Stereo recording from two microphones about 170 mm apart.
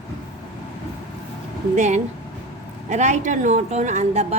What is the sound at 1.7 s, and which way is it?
A woman's voice, 45° right (ahead or behind).